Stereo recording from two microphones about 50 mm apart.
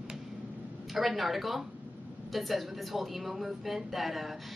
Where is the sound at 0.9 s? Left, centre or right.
Centre.